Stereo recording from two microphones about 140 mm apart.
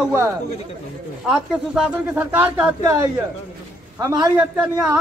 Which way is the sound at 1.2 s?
5° right (ahead or behind).